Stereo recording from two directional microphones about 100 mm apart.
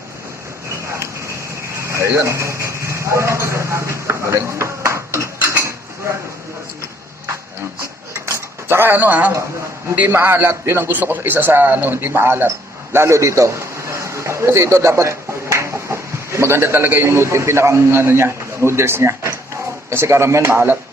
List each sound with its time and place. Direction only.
1.8 s a sound: 30° right (ahead or behind)
7.8 s cutlery: 30° right (ahead or behind)
9.9 s a man's voice: 20° right (ahead or behind)